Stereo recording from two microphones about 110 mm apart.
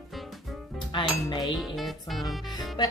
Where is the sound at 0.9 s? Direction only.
50° left (ahead or behind).